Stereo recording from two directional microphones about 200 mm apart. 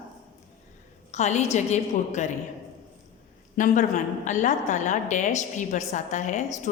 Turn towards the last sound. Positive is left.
turn(degrees=35)  # may be behind; listen again after turning